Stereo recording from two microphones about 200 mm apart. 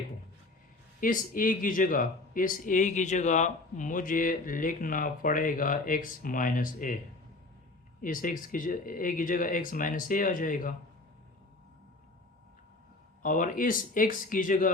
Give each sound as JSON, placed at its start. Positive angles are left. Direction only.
{"t": 1.0, "sound": "speech", "side_deg": 45}
{"t": 8.0, "sound": "speech", "side_deg": 40}
{"t": 13.2, "sound": "speech", "side_deg": 40}